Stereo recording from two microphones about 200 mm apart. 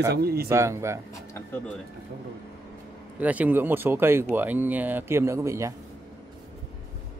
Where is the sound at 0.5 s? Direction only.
15° right (ahead or behind).